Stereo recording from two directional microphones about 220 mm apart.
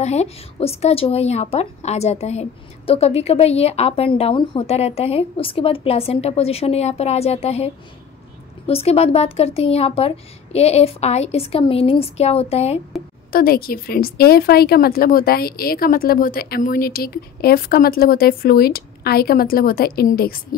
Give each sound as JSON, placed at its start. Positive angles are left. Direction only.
{"t": 0.0, "sound": "a woman's voice", "side_deg": 30}
{"t": 13.3, "sound": "a woman's voice", "side_deg": 40}